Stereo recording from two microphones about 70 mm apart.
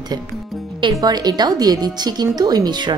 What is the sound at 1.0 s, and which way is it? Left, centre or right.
Speech, right.